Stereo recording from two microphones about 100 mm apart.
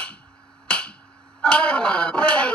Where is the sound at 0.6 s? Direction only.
10° left (ahead or behind).